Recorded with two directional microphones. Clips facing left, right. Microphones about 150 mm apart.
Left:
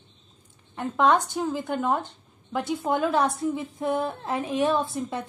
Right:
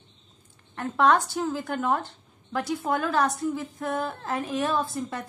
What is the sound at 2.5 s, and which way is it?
Speech, centre (ahead or behind).